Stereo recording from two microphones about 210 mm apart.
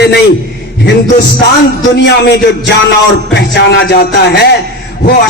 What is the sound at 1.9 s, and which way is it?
Speech, 55° left (ahead or behind).